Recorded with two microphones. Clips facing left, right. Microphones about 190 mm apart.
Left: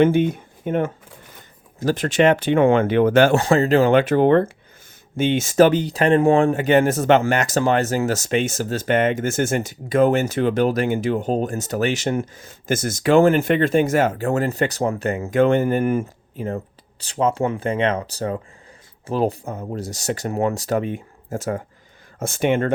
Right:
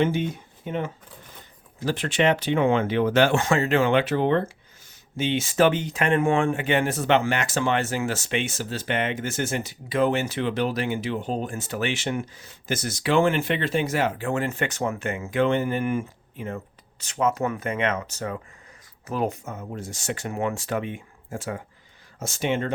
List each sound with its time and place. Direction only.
0.0 s speech: 55° left (ahead or behind)
3.3 s speech: 35° left (ahead or behind)
22.2 s speech: 55° left (ahead or behind)